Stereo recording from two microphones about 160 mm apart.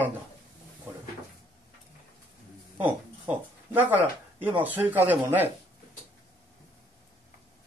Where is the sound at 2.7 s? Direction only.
10° right (ahead or behind).